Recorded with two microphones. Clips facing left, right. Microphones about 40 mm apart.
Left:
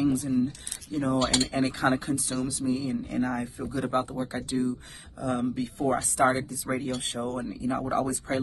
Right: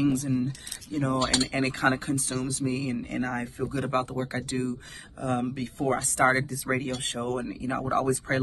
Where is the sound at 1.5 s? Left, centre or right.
Right.